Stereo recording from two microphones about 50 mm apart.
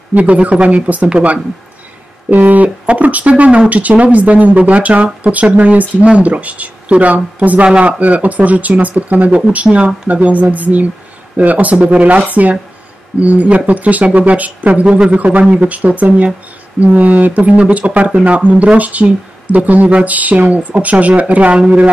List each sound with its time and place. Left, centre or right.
0.1 s speech: right
2.2 s speech: right
8.0 s speech: right